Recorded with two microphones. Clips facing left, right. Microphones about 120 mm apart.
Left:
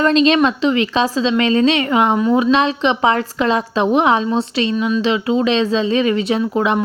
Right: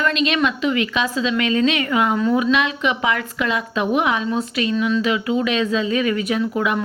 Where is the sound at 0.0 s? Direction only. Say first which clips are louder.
Left 6 dB; 30° left (ahead or behind).